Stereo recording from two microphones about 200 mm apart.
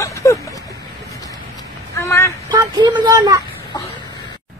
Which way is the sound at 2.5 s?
20° right (ahead or behind).